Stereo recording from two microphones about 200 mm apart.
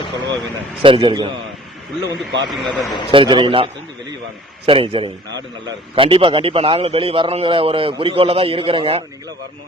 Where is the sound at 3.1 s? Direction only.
25° right (ahead or behind).